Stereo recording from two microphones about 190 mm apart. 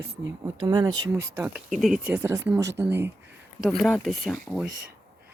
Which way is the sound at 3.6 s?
Centre (ahead or behind).